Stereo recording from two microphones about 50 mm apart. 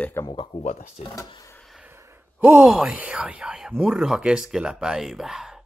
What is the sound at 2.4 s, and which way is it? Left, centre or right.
Speech, right.